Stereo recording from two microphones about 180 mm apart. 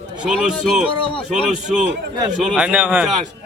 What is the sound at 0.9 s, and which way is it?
Speech, 30° left (ahead or behind).